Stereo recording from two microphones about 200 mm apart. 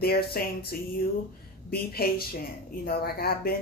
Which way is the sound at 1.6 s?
50° left (ahead or behind).